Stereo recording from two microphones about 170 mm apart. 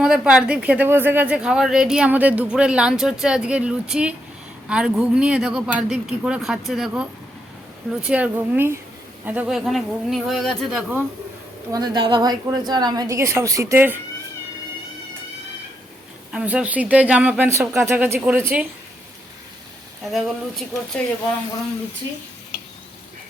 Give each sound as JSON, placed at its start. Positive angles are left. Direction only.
{"t": 0.0, "sound": "speech", "side_deg": -5}
{"t": 11.7, "sound": "a woman's voice", "side_deg": -25}
{"t": 16.3, "sound": "speech", "side_deg": -5}
{"t": 20.1, "sound": "speech", "side_deg": 0}